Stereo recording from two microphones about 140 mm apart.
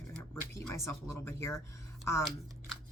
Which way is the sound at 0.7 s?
20° left (ahead or behind).